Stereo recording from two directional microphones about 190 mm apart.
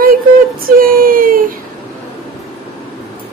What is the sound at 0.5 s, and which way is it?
Speech, 50° right (ahead or behind).